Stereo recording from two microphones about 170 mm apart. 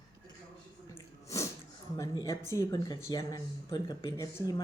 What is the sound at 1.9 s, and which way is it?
A woman's voice, 20° left (ahead or behind).